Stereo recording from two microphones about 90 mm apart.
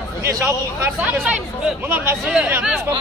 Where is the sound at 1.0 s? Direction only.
20° right (ahead or behind).